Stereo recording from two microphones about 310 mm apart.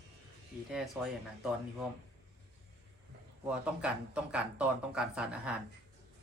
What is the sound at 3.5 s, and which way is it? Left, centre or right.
Speech, centre.